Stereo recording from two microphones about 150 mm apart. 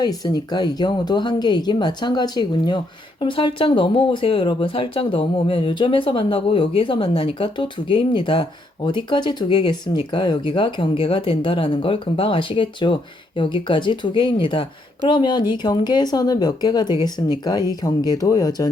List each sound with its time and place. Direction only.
0.0 s speech: 25° left (ahead or behind)